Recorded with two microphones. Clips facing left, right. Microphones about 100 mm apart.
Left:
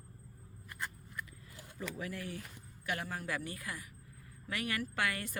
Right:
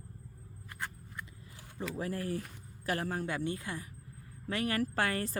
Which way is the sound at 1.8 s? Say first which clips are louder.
Right 5 dB; 35° right (ahead or behind).